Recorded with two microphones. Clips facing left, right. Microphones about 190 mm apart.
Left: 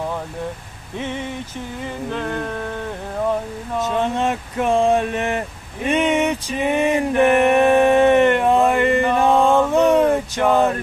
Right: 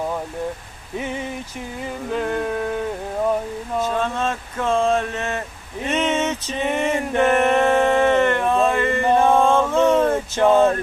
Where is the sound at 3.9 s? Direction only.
20° left (ahead or behind).